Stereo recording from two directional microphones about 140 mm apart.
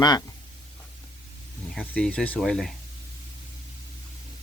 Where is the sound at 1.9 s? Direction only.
5° left (ahead or behind).